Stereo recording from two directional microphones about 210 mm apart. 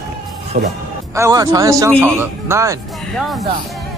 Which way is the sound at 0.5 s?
45° right (ahead or behind).